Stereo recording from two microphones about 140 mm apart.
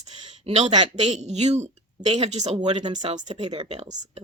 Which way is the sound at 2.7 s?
35° right (ahead or behind).